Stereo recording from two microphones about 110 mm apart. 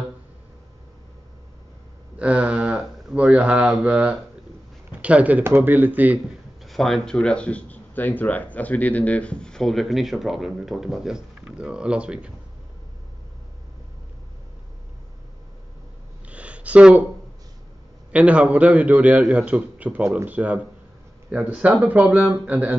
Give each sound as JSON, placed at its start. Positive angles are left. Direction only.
{"t": 2.1, "sound": "a man's voice", "side_deg": -15}
{"t": 6.6, "sound": "speech", "side_deg": 0}
{"t": 16.3, "sound": "a sound", "side_deg": -10}
{"t": 18.1, "sound": "a man's voice", "side_deg": -10}